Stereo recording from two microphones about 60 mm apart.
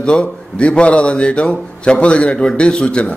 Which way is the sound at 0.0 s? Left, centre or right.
Centre.